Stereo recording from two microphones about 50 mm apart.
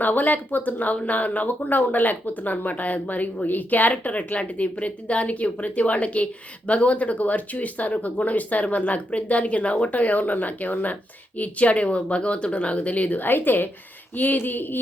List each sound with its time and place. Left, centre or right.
0.0 s speech: left